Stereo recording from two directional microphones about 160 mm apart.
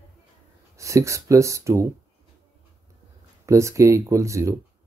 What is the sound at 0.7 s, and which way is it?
Speech, 20° right (ahead or behind).